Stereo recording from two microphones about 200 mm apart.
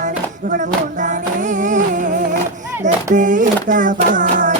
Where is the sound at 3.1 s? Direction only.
40° right (ahead or behind).